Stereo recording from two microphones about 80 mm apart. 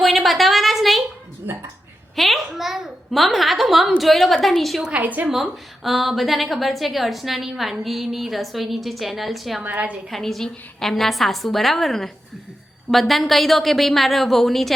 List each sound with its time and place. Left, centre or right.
0.0 s a sound: centre
2.1 s a child's voice: centre
4.8 s a woman's voice: centre
5.3 s a woman's voice: centre
9.6 s a woman's voice: centre
10.1 s a woman's voice: centre